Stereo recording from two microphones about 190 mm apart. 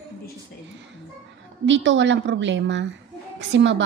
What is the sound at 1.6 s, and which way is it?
A woman's voice, 75° right (ahead or behind).